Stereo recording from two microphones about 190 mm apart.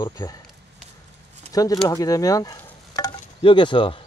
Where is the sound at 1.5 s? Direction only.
20° left (ahead or behind).